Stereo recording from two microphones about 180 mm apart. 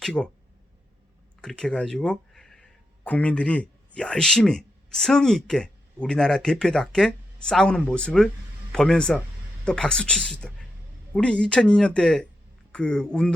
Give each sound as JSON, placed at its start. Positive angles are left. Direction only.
{"t": 0.0, "sound": "speech", "side_deg": 5}
{"t": 1.4, "sound": "speech", "side_deg": 5}